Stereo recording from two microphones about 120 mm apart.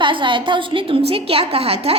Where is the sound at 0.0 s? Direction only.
45° right (ahead or behind).